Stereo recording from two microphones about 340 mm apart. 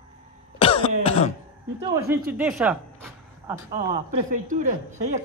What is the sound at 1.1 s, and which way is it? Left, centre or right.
Speech, centre.